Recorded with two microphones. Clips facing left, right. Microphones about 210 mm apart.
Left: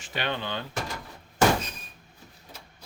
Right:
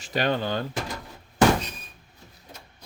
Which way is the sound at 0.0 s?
40° right (ahead or behind).